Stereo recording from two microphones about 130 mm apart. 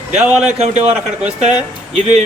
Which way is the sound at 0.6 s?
55° right (ahead or behind).